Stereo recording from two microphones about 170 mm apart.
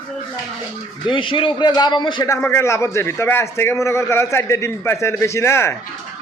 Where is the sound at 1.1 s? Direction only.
30° left (ahead or behind).